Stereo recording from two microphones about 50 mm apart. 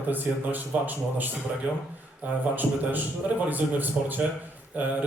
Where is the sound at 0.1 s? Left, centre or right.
Right.